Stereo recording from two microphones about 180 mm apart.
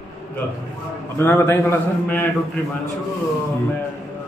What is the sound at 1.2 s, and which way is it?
A man's voice, 15° left (ahead or behind).